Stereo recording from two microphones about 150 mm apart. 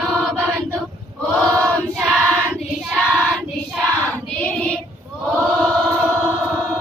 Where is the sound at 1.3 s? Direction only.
5° left (ahead or behind).